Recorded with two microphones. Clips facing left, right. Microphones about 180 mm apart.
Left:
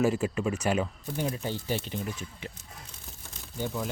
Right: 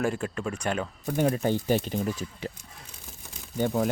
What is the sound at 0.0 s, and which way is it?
Speech, 5° left (ahead or behind).